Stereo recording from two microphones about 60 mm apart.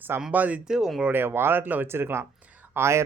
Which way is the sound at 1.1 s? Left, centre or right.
Right.